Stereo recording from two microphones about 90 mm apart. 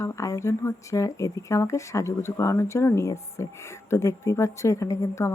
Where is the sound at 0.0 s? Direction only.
35° left (ahead or behind).